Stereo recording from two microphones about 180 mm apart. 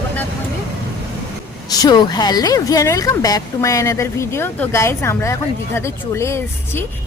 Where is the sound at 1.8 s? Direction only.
25° left (ahead or behind).